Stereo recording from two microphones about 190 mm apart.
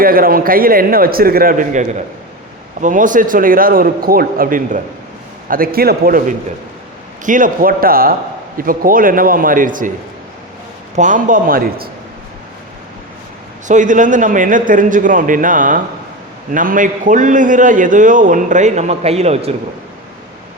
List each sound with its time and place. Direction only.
0.0 s a man's voice: 50° right (ahead or behind)
10.9 s a man's voice: 40° right (ahead or behind)
13.7 s a man's voice: 40° right (ahead or behind)